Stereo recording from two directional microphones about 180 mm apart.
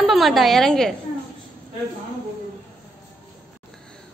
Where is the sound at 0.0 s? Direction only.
Centre (ahead or behind).